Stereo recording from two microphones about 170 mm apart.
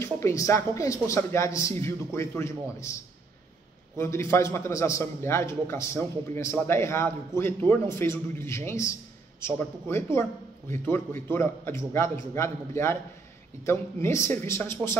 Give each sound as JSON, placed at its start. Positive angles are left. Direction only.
{"t": 0.0, "sound": "a man's voice", "side_deg": 15}
{"t": 4.0, "sound": "a man's voice", "side_deg": 15}